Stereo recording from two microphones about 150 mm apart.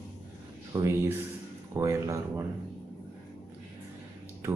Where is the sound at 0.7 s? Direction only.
20° right (ahead or behind).